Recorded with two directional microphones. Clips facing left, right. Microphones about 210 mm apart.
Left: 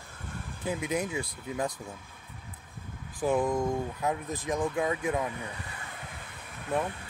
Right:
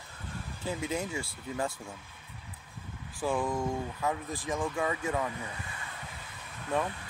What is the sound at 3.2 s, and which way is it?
Speech, 20° left (ahead or behind).